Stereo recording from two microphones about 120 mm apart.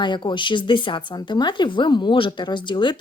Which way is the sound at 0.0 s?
40° left (ahead or behind).